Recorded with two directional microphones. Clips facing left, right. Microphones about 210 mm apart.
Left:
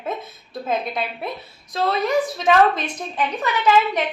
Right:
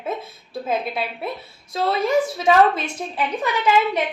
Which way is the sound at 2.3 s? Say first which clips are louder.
Left 1 dB; 10° right (ahead or behind).